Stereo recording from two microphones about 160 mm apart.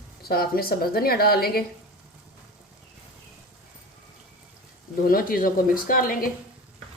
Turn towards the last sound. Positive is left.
turn(degrees=60)  # may be behind; listen again after turning